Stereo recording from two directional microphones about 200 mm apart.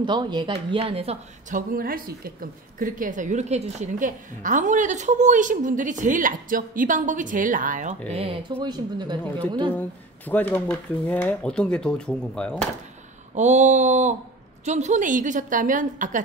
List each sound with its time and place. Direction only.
0.0 s speech: 25° right (ahead or behind)
1.7 s a woman's voice: 45° right (ahead or behind)
8.1 s speech: 30° right (ahead or behind)
9.8 s speech: 10° left (ahead or behind)
13.3 s a woman's voice: 35° right (ahead or behind)